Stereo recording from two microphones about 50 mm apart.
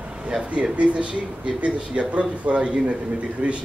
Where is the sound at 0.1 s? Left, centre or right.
Right.